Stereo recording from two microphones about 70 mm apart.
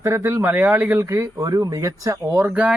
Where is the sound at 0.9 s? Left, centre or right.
Right.